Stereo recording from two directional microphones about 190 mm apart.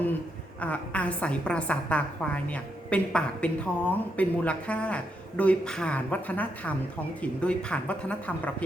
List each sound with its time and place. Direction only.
0.6 s a woman's voice: 5° left (ahead or behind)